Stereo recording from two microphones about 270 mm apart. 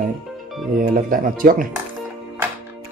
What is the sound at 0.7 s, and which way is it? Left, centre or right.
Speech, right.